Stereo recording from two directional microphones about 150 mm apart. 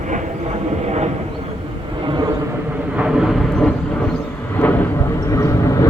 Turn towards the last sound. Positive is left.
turn(degrees=20)  # may be behind; listen again after turning